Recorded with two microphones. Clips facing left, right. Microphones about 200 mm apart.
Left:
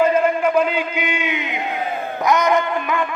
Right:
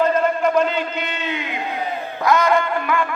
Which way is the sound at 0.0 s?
10° left (ahead or behind).